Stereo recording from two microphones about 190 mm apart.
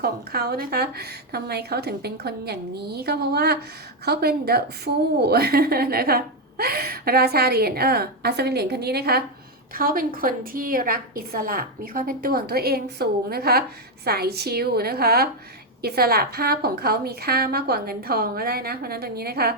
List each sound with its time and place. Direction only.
0.0 s a woman's voice: 55° right (ahead or behind)